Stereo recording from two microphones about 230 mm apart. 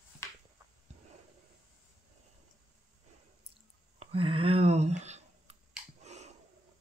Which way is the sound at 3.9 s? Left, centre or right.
Right.